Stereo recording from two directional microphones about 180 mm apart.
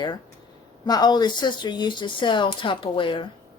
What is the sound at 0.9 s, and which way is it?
Speech, 20° left (ahead or behind).